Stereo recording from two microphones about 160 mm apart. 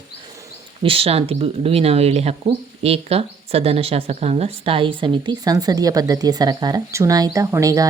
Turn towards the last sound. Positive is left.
turn(degrees=-20)  # may be behind; listen again after turning